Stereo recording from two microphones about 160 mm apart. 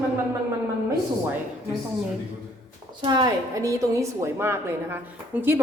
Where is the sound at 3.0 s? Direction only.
25° right (ahead or behind).